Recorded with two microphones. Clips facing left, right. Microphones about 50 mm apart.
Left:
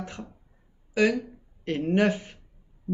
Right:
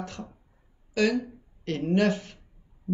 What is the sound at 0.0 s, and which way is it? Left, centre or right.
Speech, centre.